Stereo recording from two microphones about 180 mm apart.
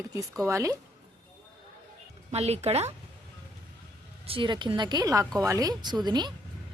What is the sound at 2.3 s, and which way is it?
Speech, 35° right (ahead or behind).